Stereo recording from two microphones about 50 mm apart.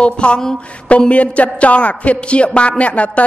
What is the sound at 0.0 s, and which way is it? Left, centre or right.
A woman's voice, left.